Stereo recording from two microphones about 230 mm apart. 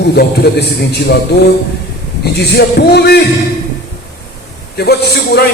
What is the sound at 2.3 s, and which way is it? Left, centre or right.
Speech, left.